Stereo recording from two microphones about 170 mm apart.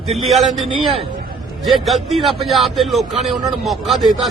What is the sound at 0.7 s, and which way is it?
Speech, 30° right (ahead or behind).